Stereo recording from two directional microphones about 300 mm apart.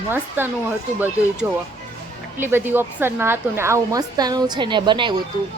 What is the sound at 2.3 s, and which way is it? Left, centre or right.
A woman's voice, centre.